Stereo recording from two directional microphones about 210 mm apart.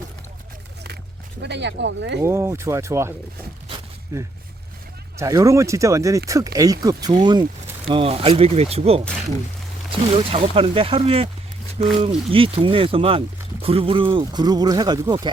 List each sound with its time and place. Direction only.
1.4 s speech: 55° right (ahead or behind)
2.2 s speech: 15° right (ahead or behind)
4.1 s speech: 15° right (ahead or behind); by 9.0 s 30° right (ahead or behind)
10.2 s speech: 25° right (ahead or behind)